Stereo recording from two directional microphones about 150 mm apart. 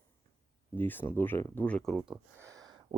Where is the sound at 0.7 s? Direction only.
15° left (ahead or behind).